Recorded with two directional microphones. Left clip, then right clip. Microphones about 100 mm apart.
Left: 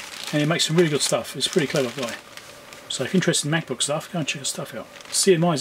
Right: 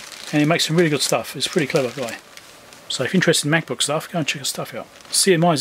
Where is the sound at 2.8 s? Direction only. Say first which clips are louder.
Right 5 dB; 35° right (ahead or behind).